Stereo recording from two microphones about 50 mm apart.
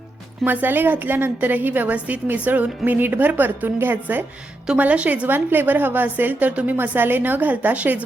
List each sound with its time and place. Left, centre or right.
0.4 s a woman's voice: right
4.8 s a woman's voice: right
5.3 s a woman's voice: right